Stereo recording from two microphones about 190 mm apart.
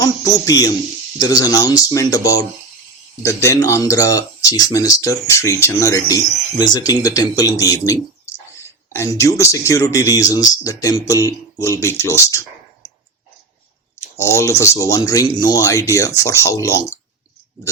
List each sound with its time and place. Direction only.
0.0 s speech: 20° left (ahead or behind)
14.2 s speech: 15° left (ahead or behind)